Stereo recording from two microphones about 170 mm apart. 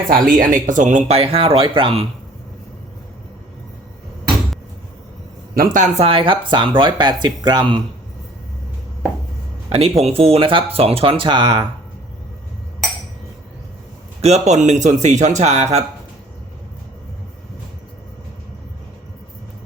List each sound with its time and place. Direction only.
0.1 s speech: 55° right (ahead or behind); by 2.0 s 30° right (ahead or behind)
5.5 s speech: 45° right (ahead or behind); by 7.8 s 25° right (ahead or behind)
9.6 s speech: 35° right (ahead or behind)
14.2 s speech: 40° right (ahead or behind)